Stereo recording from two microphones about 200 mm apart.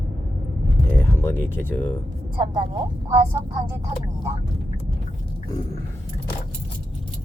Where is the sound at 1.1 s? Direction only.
10° left (ahead or behind).